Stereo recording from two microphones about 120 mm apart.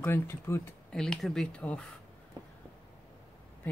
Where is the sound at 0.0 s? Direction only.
20° left (ahead or behind).